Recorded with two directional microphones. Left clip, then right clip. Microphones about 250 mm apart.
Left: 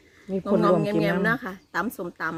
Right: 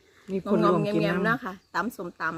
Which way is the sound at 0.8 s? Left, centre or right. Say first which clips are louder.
Left 2 dB; centre.